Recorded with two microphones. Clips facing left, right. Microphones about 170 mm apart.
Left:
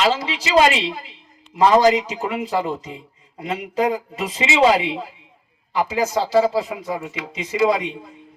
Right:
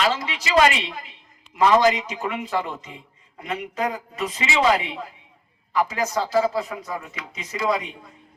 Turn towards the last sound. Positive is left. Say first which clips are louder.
# left 6 dB
turn(degrees=25)  # may be behind; listen again after turning